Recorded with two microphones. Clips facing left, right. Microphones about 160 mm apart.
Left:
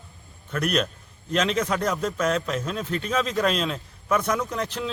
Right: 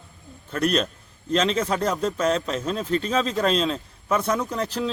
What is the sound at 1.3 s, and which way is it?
Speech, 30° right (ahead or behind).